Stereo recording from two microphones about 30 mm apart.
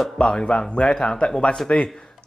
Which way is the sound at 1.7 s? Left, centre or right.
Left.